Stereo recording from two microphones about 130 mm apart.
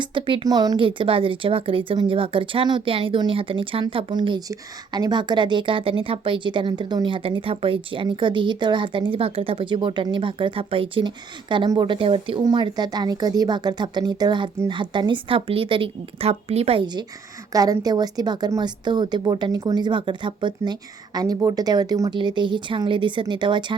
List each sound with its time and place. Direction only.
0.0 s a woman's voice: 40° right (ahead or behind)
16.8 s a woman's voice: 35° right (ahead or behind)